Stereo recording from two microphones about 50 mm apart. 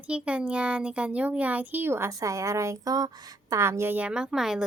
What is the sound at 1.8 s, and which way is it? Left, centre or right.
Speech, right.